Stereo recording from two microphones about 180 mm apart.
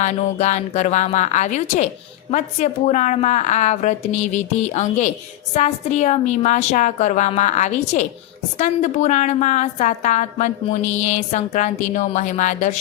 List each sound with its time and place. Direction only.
0.0 s a woman's voice: 40° left (ahead or behind)